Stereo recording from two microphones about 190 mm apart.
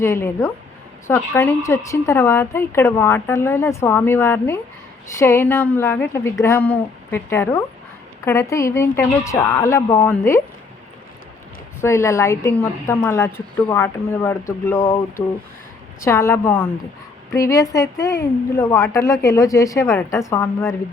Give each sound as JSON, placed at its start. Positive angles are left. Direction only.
{"t": 0.0, "sound": "a woman's voice", "side_deg": 15}
{"t": 11.8, "sound": "a woman's voice", "side_deg": 15}